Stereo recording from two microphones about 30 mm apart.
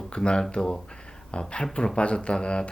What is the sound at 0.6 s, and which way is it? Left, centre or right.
Speech, centre.